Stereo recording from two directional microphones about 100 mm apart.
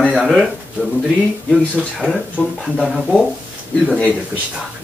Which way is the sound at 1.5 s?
5° left (ahead or behind).